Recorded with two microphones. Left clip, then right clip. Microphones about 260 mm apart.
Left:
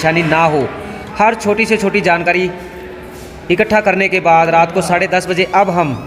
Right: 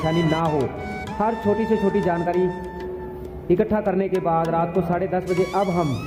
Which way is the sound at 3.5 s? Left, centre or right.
Centre.